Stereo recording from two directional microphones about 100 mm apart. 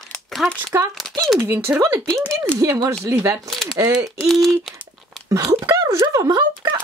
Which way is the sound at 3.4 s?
5° left (ahead or behind).